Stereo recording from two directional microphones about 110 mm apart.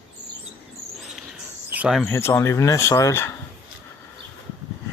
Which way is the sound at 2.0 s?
25° left (ahead or behind).